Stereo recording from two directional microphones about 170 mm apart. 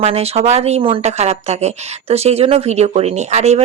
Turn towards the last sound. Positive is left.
turn(degrees=-40)  # may be behind; listen again after turning